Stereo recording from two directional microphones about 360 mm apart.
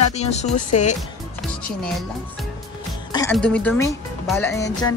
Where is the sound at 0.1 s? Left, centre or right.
Centre.